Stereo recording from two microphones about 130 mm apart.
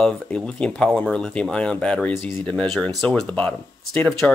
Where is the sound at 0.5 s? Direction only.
5° left (ahead or behind).